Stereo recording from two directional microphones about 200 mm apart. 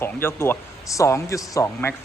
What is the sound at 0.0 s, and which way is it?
Speech, 10° left (ahead or behind).